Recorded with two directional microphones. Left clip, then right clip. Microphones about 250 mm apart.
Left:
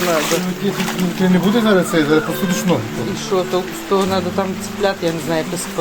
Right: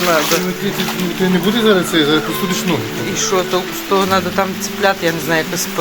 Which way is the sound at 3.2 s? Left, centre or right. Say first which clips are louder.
Right 2 dB; centre.